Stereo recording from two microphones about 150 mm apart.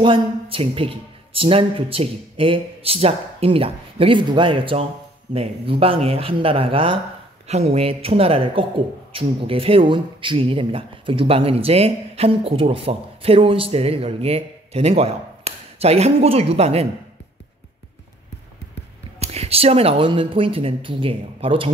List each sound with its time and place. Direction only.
0.0 s speech: 35° right (ahead or behind)
19.1 s speech: 45° right (ahead or behind)